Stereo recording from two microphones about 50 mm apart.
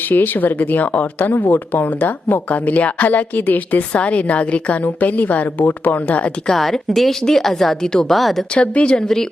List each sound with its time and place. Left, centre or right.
0.1 s a woman's voice: left
6.5 s a woman's voice: centre
8.5 s speech: left